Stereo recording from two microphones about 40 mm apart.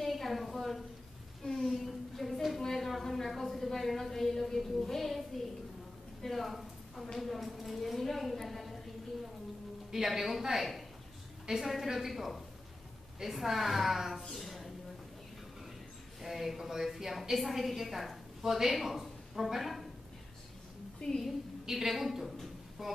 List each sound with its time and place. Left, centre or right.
0.0 s a sound: centre
1.4 s a woman's voice: centre
2.6 s a sound: centre
2.9 s a woman's voice: centre
6.2 s a sound: centre
7.2 s a woman's voice: centre
9.8 s a woman's voice: centre
16.2 s a woman's voice: centre
21.0 s a woman's voice: centre
21.6 s a woman's voice: centre